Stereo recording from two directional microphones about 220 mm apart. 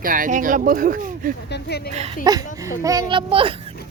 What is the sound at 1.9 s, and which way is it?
Speech, 25° right (ahead or behind).